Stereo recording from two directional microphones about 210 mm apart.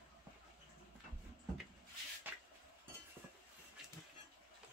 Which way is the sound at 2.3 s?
10° right (ahead or behind).